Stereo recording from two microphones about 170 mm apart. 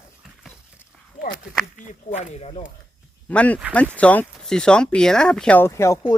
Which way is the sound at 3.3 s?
10° left (ahead or behind).